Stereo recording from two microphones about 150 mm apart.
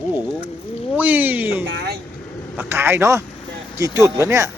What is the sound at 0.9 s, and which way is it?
A man's voice, 10° right (ahead or behind).